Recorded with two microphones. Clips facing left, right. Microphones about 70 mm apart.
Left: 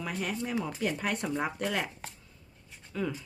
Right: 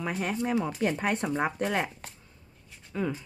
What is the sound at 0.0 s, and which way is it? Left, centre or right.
Speech, right.